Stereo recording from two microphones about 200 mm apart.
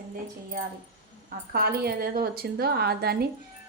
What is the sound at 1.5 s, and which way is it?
A woman's voice, 50° right (ahead or behind).